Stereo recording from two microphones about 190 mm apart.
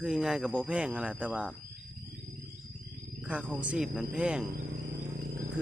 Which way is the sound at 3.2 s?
5° right (ahead or behind).